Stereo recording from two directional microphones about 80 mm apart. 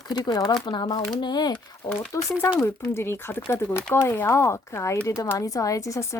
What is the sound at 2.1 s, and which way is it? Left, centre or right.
Speech, left.